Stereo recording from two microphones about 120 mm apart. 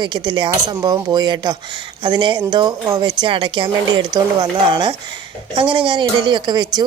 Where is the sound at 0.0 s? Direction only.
40° right (ahead or behind).